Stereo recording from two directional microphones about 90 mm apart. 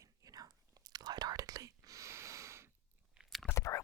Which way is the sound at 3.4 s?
35° left (ahead or behind).